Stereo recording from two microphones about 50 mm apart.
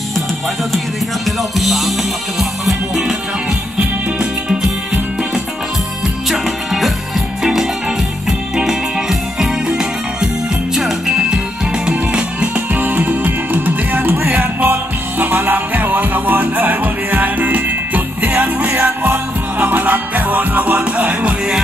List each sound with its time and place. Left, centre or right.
1.2 s music: centre
6.3 s music: centre
9.4 s music: centre
12.7 s music: right